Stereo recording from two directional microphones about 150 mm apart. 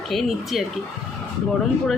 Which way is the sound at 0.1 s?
Centre (ahead or behind).